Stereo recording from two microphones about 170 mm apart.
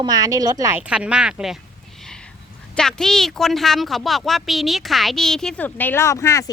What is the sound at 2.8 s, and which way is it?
A woman's voice, 5° left (ahead or behind).